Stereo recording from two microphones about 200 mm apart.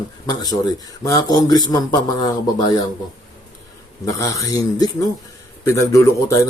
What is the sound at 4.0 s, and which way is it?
A man's voice, 15° left (ahead or behind).